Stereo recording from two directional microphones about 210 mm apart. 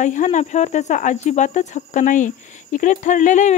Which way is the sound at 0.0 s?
35° left (ahead or behind).